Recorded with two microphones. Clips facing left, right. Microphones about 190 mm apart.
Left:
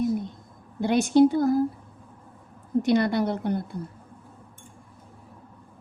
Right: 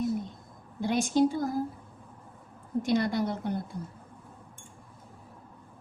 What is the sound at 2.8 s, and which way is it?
Speech, 65° left (ahead or behind).